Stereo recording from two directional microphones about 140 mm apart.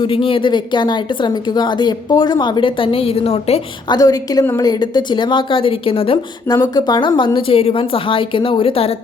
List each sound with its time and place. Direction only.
0.0 s a woman's voice: 40° left (ahead or behind)
3.8 s a woman's voice: 25° left (ahead or behind)
6.5 s a woman's voice: 30° left (ahead or behind)